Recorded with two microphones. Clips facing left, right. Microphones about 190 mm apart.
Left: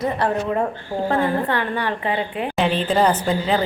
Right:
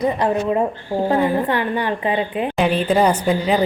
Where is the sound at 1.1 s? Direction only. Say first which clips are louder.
Right 2 dB; 20° right (ahead or behind).